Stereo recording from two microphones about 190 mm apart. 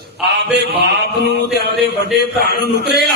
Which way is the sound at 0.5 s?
60° right (ahead or behind).